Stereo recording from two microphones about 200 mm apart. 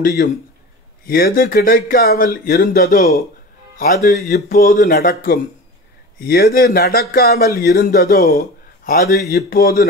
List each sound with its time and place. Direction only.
0.0 s a man's voice: 55° left (ahead or behind)